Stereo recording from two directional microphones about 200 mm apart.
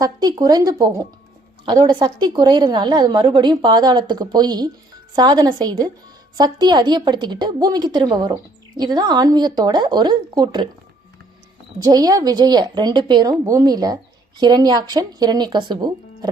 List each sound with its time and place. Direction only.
0.0 s a woman's voice: 20° right (ahead or behind)
11.8 s a woman's voice: 20° right (ahead or behind)